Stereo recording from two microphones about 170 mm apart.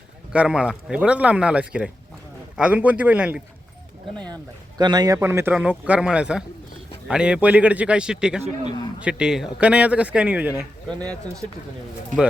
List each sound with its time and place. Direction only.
0.3 s a man's voice: 5° right (ahead or behind)
4.8 s a man's voice: 25° right (ahead or behind)
10.8 s speech: 5° left (ahead or behind)